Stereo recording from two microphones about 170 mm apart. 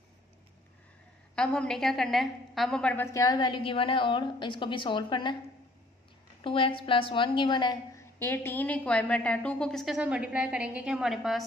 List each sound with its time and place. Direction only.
1.3 s a woman's voice: 5° left (ahead or behind); by 5.3 s 25° left (ahead or behind)
6.4 s a woman's voice: 30° left (ahead or behind); by 11.4 s centre (ahead or behind)